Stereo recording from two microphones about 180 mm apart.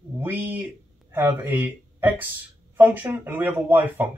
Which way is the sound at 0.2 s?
10° right (ahead or behind).